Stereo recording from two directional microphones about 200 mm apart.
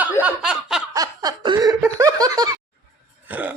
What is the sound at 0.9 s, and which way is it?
Snicker, 20° right (ahead or behind).